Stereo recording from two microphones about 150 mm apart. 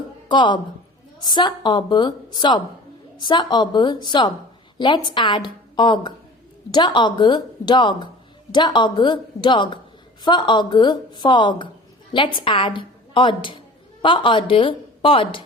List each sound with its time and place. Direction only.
0.3 s a woman's voice: 30° left (ahead or behind)